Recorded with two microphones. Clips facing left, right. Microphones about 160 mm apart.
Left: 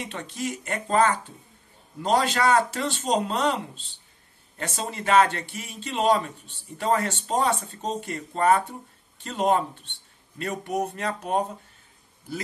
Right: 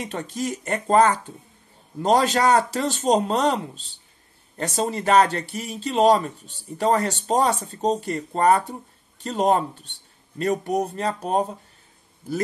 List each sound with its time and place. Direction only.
0.0 s speech: 40° right (ahead or behind)